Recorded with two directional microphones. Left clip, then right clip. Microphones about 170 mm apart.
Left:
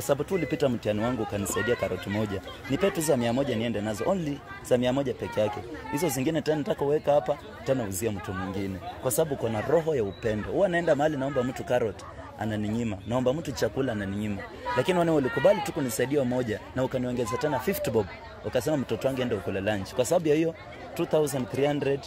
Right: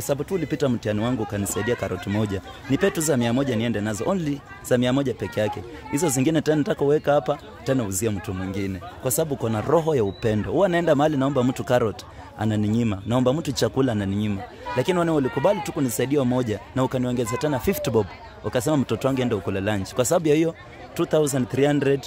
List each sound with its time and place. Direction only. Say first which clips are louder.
0.0 s speech: right 1 dB; 30° right (ahead or behind)